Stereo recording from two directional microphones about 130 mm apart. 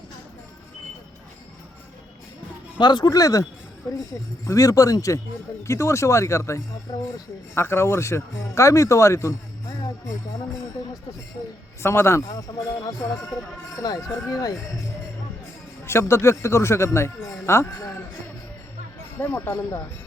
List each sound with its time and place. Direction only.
2.7 s speech: 35° left (ahead or behind)
4.4 s speech: 25° left (ahead or behind)
11.8 s speech: 20° left (ahead or behind)
15.8 s speech: 20° left (ahead or behind)
19.2 s speech: 20° left (ahead or behind)